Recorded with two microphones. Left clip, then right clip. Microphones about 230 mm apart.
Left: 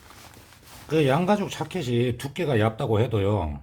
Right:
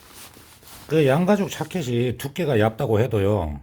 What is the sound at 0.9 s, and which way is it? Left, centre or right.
Speech, centre.